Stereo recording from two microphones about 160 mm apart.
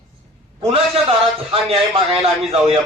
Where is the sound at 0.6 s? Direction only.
35° right (ahead or behind).